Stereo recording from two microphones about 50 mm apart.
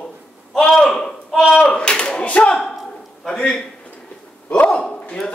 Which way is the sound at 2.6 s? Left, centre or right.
Centre.